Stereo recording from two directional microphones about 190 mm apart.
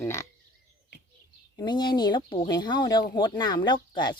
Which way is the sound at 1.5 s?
25° left (ahead or behind).